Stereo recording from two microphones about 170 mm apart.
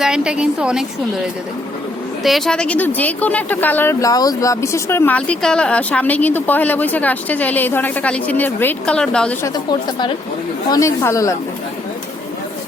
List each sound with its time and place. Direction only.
0.0 s a woman's voice: 5° right (ahead or behind)
10.7 s speech: 15° left (ahead or behind)